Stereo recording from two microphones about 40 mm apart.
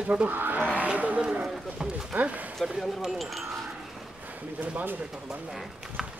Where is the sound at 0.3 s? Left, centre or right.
Right.